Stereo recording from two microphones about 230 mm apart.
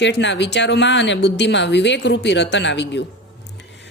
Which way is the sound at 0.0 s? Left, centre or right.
Left.